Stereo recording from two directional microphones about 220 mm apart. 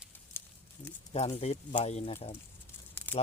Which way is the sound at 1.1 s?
30° left (ahead or behind).